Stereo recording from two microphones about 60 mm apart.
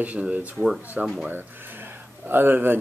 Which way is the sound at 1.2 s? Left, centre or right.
Right.